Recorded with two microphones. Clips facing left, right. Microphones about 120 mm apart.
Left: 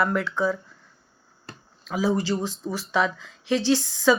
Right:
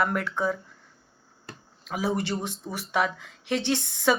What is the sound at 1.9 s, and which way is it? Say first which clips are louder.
Speech: left 4 dB; 55° right (ahead or behind).